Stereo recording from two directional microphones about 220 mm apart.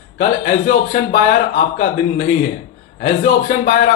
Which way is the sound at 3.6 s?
40° left (ahead or behind).